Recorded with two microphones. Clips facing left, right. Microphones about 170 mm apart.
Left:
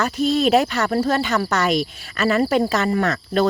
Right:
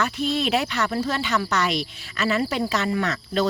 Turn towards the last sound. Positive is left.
turn(degrees=50)  # may be behind; listen again after turning